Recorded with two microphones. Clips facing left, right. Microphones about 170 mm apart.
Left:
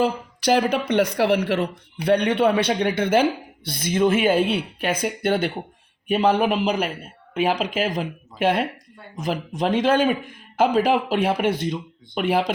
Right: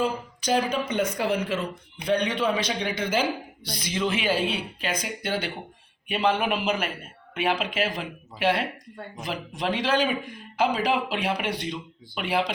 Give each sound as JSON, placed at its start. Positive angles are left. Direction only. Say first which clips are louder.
{"t": 0.0, "sound": "a man's voice", "louder": "left 5 dB", "side_deg": 70}
{"t": 6.1, "sound": "a man's voice", "louder": "left 5 dB", "side_deg": 40}